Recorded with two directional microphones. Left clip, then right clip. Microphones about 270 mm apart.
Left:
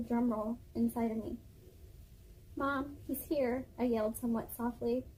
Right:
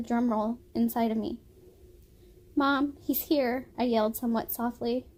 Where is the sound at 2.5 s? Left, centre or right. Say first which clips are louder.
Right 9 dB; right.